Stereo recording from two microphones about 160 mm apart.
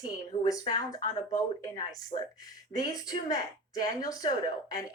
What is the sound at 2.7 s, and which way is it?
Speech, 20° left (ahead or behind).